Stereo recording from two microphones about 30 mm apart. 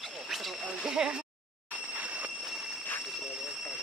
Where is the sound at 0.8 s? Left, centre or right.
Right.